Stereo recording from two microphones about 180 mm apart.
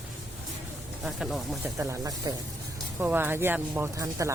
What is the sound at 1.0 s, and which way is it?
Speech, centre (ahead or behind).